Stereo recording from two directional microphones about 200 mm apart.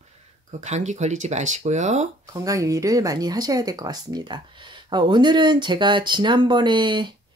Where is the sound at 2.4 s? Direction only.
15° right (ahead or behind).